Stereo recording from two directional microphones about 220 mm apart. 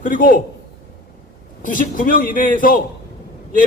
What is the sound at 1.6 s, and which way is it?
A man's voice, 35° left (ahead or behind).